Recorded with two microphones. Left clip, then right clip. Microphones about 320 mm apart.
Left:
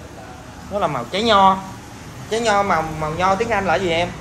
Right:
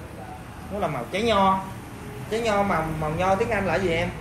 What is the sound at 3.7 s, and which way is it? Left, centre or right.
Speech, left.